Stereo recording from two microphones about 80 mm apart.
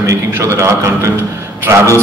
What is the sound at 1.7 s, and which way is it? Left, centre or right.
Speech, right.